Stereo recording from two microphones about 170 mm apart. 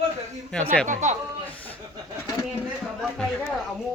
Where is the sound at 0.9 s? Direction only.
45° right (ahead or behind).